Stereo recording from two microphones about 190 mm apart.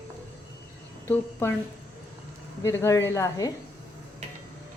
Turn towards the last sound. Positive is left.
turn(degrees=15)  # may be behind; listen again after turning